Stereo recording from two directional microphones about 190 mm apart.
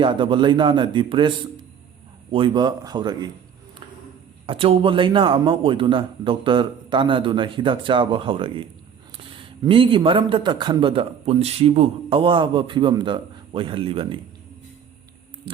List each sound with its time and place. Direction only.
0.0 s a man's voice: 25° right (ahead or behind)
2.3 s a man's voice: 25° right (ahead or behind)
4.4 s a man's voice: 30° right (ahead or behind)